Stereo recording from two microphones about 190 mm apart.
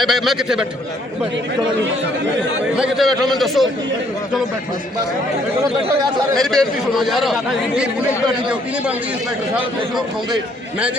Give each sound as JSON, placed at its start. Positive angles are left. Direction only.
{"t": 0.0, "sound": "a man's voice", "side_deg": 0}
{"t": 2.7, "sound": "a man's voice", "side_deg": 0}
{"t": 6.3, "sound": "a man's voice", "side_deg": 0}